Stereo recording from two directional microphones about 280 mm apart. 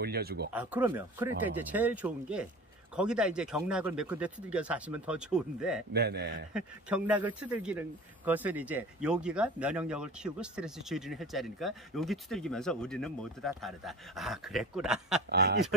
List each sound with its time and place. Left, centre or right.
0.0 s speech: right
0.5 s speech: centre
5.9 s speech: right
6.5 s speech: centre